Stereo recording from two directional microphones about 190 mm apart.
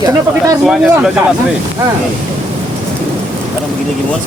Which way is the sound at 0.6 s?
5° right (ahead or behind).